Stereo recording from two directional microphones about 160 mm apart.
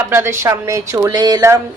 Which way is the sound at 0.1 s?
15° right (ahead or behind).